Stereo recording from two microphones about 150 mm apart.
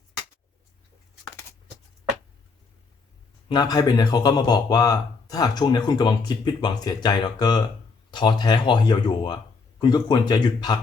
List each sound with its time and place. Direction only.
3.5 s speech: 25° left (ahead or behind)